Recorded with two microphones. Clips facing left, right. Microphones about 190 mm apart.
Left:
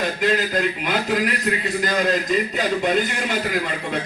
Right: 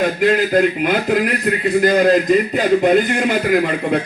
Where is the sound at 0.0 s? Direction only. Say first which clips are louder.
Right 6 dB; 55° right (ahead or behind).